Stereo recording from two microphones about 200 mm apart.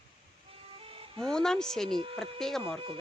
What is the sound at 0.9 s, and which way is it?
Music, 30° right (ahead or behind).